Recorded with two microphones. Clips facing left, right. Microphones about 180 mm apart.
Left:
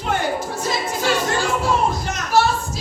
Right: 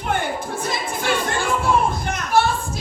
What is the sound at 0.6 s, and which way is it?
Music, 55° right (ahead or behind).